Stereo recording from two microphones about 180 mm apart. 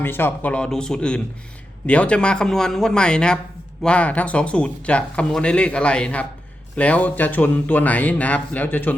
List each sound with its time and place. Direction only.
0.0 s speech: 10° left (ahead or behind)